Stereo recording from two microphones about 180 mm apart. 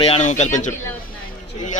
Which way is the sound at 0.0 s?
35° left (ahead or behind).